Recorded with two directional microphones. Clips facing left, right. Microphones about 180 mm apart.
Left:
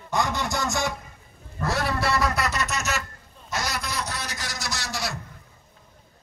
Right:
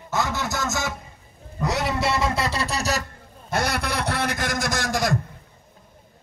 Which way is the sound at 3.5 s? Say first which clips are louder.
Right 6 dB; 60° right (ahead or behind).